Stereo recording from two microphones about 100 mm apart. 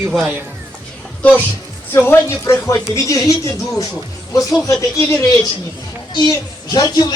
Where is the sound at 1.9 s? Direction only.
25° left (ahead or behind).